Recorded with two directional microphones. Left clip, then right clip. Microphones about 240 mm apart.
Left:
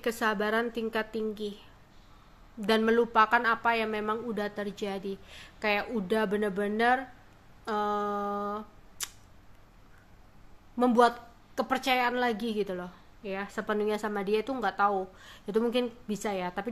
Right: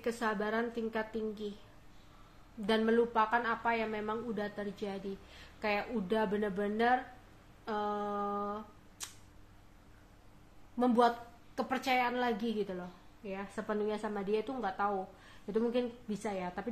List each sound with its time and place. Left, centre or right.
0.0 s a woman's voice: left
2.6 s a woman's voice: left
10.8 s a woman's voice: left